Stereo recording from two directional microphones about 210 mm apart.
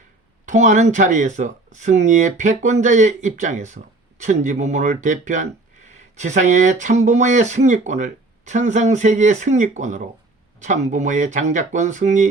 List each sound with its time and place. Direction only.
0.4 s speech: 35° right (ahead or behind)